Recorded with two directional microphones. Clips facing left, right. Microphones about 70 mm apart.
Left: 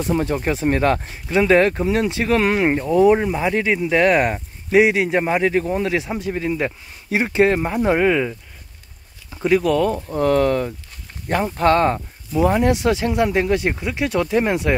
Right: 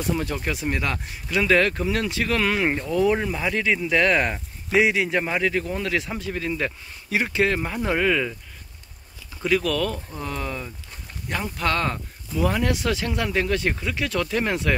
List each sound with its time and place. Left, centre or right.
0.0 s speech: left
10.1 s speech: left
11.2 s speech: left